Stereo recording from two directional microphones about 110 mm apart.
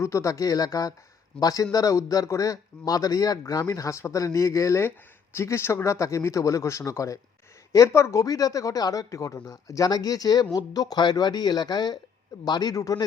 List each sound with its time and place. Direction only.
0.0 s speech: 25° left (ahead or behind)